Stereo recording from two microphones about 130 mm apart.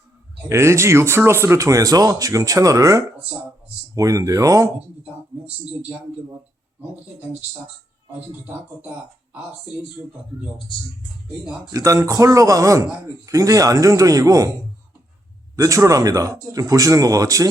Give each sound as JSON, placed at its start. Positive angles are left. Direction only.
{"t": 0.4, "sound": "speech", "side_deg": -20}
{"t": 11.7, "sound": "speech", "side_deg": -25}
{"t": 15.5, "sound": "speech", "side_deg": -25}